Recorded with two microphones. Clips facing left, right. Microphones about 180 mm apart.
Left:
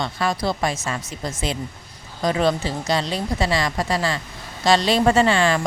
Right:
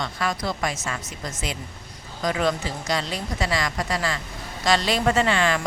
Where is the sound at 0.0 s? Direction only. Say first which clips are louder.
Left 4 dB; 30° left (ahead or behind).